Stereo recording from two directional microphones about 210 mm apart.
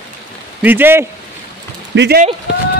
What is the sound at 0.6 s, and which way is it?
Speech, 10° right (ahead or behind).